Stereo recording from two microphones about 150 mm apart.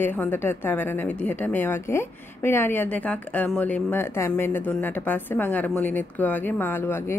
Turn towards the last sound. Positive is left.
turn(degrees=15)  # may be behind; listen again after turning